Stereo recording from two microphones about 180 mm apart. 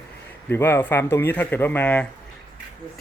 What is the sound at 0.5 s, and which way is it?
Speech, 10° left (ahead or behind).